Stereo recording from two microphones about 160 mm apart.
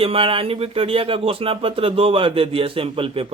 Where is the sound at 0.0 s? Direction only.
35° right (ahead or behind).